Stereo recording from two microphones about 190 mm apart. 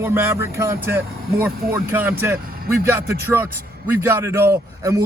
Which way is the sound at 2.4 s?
50° right (ahead or behind).